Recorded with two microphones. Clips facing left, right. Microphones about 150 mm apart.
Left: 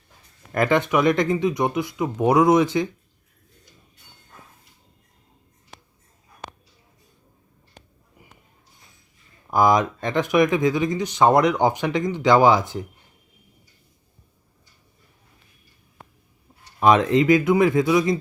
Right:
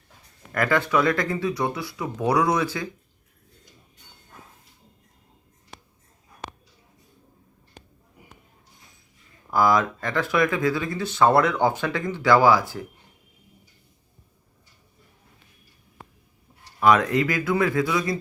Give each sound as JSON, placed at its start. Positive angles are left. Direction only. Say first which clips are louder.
{"t": 0.5, "sound": "speech", "louder": "left 2 dB", "side_deg": 20}
{"t": 9.5, "sound": "speech", "louder": "left 2 dB", "side_deg": 20}
{"t": 16.8, "sound": "speech", "louder": "left 3 dB", "side_deg": 20}